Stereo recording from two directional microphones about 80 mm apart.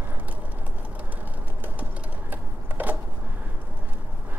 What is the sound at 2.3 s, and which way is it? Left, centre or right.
Sewing machine, right.